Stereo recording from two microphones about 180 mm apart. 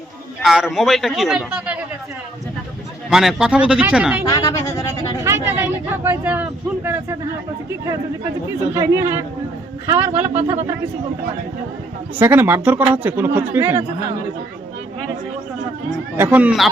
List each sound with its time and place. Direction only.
0.4 s a man's voice: centre (ahead or behind)
3.1 s a man's voice: centre (ahead or behind)
4.3 s a sound: 20° left (ahead or behind)
5.2 s vehicle: 15° right (ahead or behind)
8.7 s speech: 15° right (ahead or behind)
12.2 s speech: 10° right (ahead or behind)
16.1 s speech: 10° right (ahead or behind)